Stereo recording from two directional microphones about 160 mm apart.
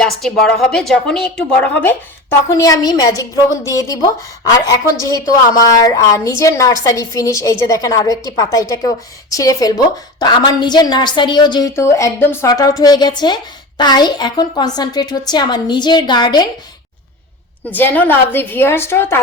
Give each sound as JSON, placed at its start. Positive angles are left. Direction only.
{"t": 0.0, "sound": "a woman's voice", "side_deg": 5}
{"t": 11.7, "sound": "a woman's voice", "side_deg": 15}
{"t": 17.7, "sound": "a woman's voice", "side_deg": 10}